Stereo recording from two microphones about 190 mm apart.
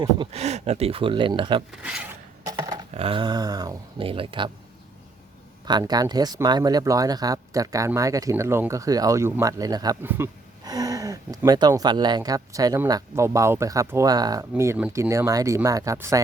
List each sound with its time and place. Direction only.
0.0 s speech: 30° right (ahead or behind)
1.8 s speech: 5° right (ahead or behind)
2.5 s a sound: 20° right (ahead or behind)
2.9 s speech: 30° right (ahead or behind)
5.6 s speech: 20° right (ahead or behind)